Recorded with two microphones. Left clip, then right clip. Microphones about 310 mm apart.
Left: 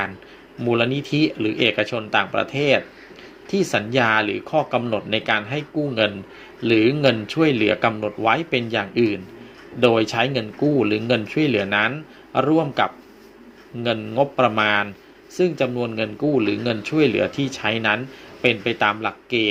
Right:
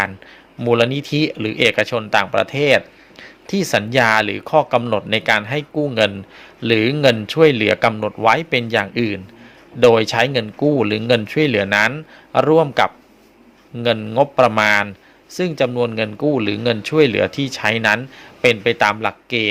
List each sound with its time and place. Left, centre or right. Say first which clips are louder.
0.6 s speech: right 5 dB; right